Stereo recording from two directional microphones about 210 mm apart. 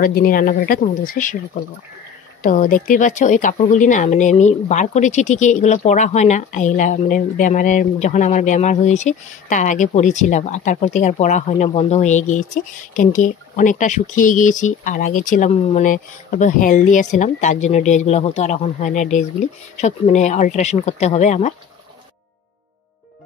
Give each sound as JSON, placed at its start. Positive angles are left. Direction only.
{"t": 0.0, "sound": "a woman's voice", "side_deg": 45}